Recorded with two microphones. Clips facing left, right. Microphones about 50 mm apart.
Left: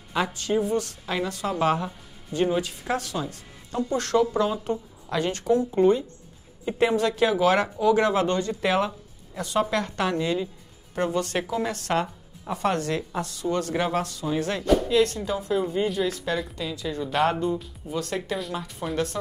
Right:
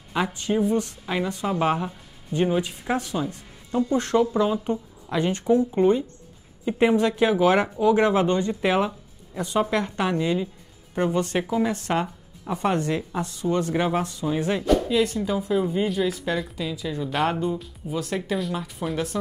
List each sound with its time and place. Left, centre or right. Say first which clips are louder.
0.1 s speech: even; centre